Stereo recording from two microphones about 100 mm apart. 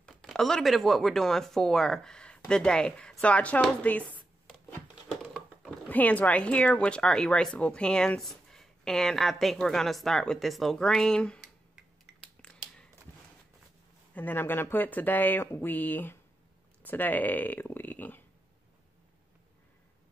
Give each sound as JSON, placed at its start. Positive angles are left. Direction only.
{"t": 0.0, "sound": "speech", "side_deg": 5}
{"t": 5.3, "sound": "a sound", "side_deg": 0}
{"t": 5.9, "sound": "speech", "side_deg": 15}
{"t": 12.4, "sound": "finger snapping", "side_deg": 10}
{"t": 14.1, "sound": "speech", "side_deg": 20}
{"t": 16.8, "sound": "a sound", "side_deg": 20}